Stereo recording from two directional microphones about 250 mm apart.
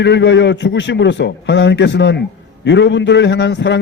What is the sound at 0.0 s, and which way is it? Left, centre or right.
A man's voice, left.